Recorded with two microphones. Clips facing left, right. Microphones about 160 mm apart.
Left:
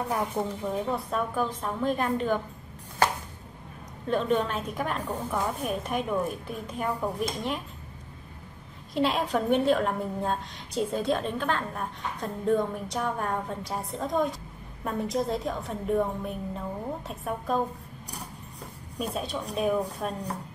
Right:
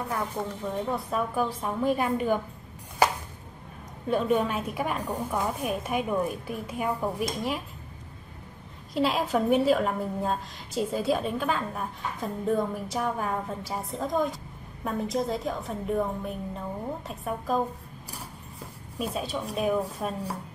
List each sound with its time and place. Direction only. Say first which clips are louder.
0.4 s a woman's voice: left 3 dB; 25° left (ahead or behind)
0.8 s a woman's voice: even; centre (ahead or behind)
4.1 s a woman's voice: right 1 dB; 10° right (ahead or behind)
8.9 s a woman's voice: right 1 dB; centre (ahead or behind)